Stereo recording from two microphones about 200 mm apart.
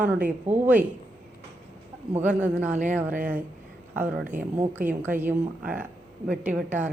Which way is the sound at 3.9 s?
10° right (ahead or behind).